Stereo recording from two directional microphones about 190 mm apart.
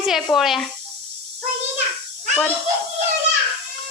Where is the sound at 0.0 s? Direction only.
Centre (ahead or behind).